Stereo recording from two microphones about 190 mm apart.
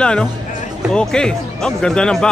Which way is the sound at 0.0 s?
5° left (ahead or behind).